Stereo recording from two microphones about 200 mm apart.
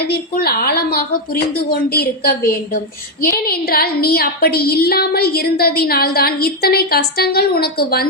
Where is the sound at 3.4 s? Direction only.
50° left (ahead or behind).